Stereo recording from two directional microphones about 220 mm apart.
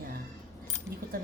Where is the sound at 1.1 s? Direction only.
40° right (ahead or behind).